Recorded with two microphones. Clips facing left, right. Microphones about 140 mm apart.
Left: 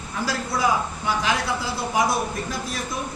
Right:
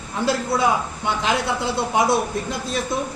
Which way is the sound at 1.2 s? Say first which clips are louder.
Right 5 dB; 25° right (ahead or behind).